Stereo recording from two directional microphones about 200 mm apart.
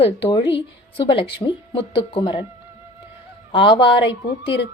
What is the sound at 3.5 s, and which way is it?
Speech, 25° left (ahead or behind).